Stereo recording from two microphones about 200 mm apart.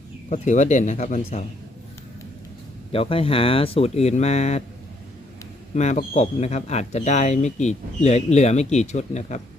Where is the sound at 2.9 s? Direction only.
25° left (ahead or behind).